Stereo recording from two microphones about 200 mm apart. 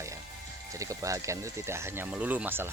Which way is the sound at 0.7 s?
15° right (ahead or behind).